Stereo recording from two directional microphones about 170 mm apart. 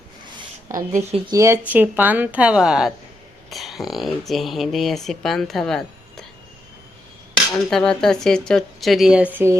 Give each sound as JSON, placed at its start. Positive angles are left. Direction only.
{"t": 0.3, "sound": "a sound", "side_deg": -20}
{"t": 1.3, "sound": "a woman's voice", "side_deg": -15}
{"t": 7.5, "sound": "speech", "side_deg": 5}